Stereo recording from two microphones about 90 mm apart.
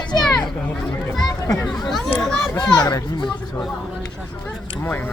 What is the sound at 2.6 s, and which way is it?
Speech, 50° left (ahead or behind).